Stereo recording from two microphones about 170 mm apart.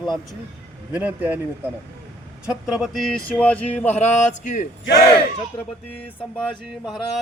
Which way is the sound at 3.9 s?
40° left (ahead or behind).